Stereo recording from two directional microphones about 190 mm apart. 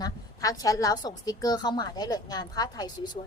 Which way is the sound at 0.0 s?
20° left (ahead or behind).